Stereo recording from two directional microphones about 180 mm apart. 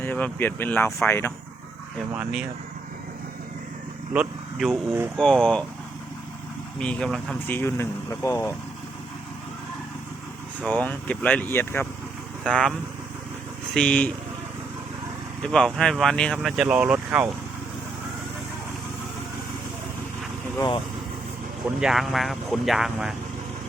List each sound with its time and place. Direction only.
0.0 s speech: 10° left (ahead or behind)
2.1 s speech: 5° right (ahead or behind)
4.1 s speech: 5° right (ahead or behind)
6.7 s speech: 5° left (ahead or behind)
10.7 s speech: 10° left (ahead or behind)
13.7 s speech: 5° left (ahead or behind)
15.4 s speech: 5° left (ahead or behind)
20.6 s speech: 25° left (ahead or behind)
21.8 s speech: centre (ahead or behind)